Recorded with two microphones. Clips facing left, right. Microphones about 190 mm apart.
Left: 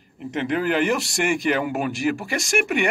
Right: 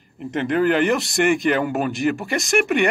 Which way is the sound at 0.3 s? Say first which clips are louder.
Right 4 dB; 5° left (ahead or behind).